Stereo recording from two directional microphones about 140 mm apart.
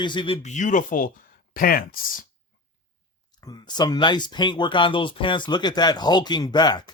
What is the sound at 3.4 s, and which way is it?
Speech, 30° left (ahead or behind).